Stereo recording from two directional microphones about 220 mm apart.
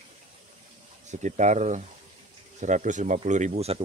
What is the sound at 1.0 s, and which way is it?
Speech, 35° right (ahead or behind).